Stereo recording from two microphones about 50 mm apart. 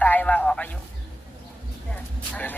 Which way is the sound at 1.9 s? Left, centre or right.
Left.